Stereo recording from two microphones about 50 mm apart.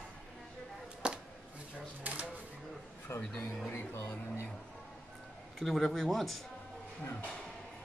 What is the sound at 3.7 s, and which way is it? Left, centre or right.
Music, left.